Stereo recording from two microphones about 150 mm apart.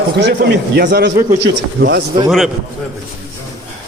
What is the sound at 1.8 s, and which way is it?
Speech, 90° right.